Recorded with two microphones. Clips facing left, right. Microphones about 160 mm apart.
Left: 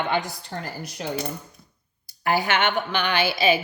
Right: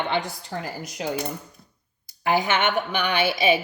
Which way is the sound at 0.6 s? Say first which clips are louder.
Right 2 dB; 15° right (ahead or behind).